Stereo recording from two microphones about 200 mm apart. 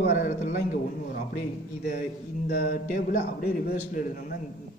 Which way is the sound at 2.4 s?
45° left (ahead or behind).